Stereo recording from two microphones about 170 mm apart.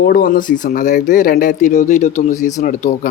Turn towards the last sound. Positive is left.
turn(degrees=50)  # may be behind; listen again after turning